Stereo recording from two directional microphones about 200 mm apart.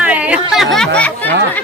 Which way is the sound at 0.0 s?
5° right (ahead or behind).